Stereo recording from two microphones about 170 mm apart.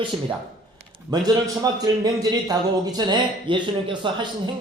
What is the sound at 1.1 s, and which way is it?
A man's voice, 25° right (ahead or behind).